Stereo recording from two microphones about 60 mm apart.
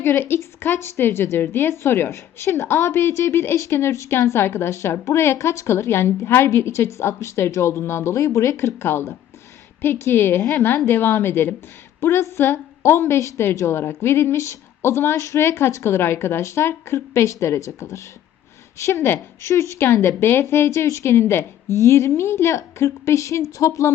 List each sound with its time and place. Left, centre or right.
0.0 s a woman's voice: left
4.1 s a woman's voice: left
19.0 s a woman's voice: left
19.8 s a woman's voice: left